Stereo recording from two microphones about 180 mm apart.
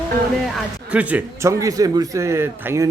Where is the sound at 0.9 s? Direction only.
10° right (ahead or behind).